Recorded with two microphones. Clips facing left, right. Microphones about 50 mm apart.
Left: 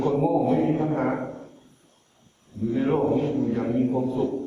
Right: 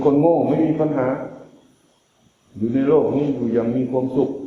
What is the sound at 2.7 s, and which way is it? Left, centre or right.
Speech, right.